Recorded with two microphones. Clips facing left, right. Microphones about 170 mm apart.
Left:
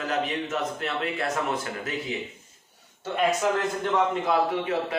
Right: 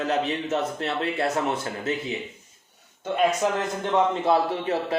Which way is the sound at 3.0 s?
20° right (ahead or behind).